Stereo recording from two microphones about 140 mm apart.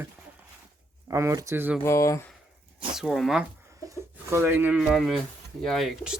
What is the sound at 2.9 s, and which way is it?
Speech, centre (ahead or behind).